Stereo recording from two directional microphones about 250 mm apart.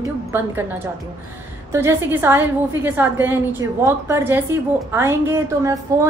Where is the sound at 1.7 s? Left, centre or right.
Centre.